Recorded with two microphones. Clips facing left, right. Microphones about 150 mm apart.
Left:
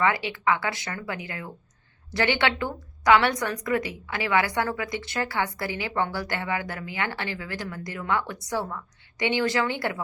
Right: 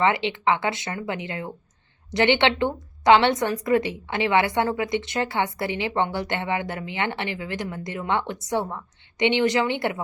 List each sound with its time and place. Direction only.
0.0 s a woman's voice: 25° right (ahead or behind)